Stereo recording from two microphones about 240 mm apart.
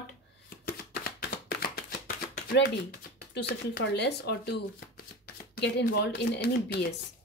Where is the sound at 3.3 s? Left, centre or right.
Left.